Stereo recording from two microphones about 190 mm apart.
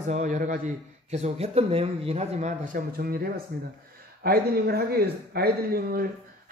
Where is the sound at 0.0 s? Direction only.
40° right (ahead or behind).